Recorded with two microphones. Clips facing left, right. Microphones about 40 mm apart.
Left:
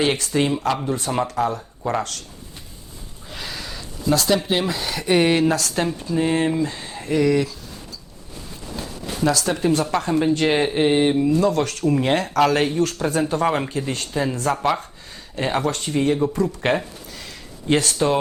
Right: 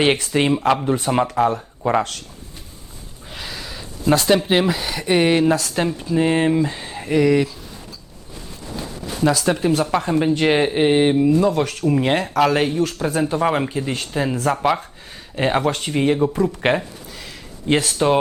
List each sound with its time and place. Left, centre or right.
0.0 s speech: right
3.2 s a sound: centre
4.0 s speech: right
4.6 s speech: centre
9.2 s speech: centre
15.4 s speech: right; by 17.9 s centre
17.9 s speech: centre